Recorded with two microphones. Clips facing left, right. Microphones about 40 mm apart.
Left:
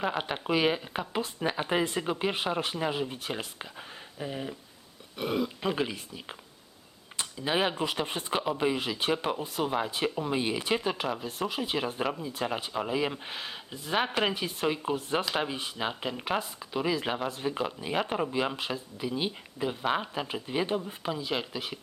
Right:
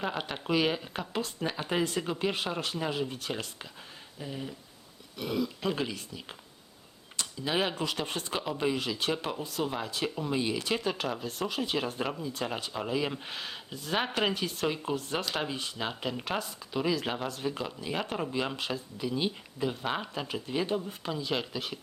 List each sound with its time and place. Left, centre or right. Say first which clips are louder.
0.2 s speech: right 1 dB; centre
5.6 s speech: left 2 dB; centre